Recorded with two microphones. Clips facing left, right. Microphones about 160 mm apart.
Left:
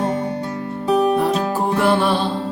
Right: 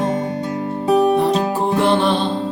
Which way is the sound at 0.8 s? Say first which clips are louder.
Right 2 dB; 20° right (ahead or behind).